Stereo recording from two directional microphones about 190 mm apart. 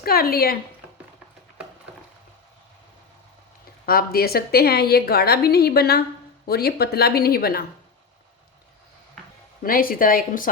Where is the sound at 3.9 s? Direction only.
50° left (ahead or behind).